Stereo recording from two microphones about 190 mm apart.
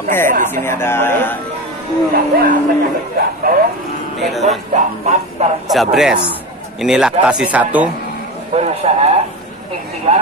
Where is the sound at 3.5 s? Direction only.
50° right (ahead or behind).